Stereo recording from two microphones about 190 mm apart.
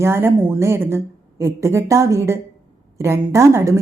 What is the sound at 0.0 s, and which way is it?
A woman's voice, 15° right (ahead or behind).